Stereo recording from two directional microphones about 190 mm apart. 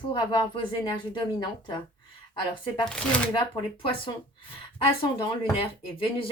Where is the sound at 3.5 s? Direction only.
25° left (ahead or behind).